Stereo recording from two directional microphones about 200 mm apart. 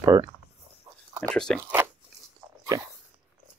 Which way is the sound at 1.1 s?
5° left (ahead or behind).